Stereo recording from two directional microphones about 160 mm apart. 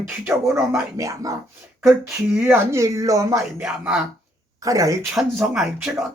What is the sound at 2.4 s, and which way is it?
Speech, 15° right (ahead or behind).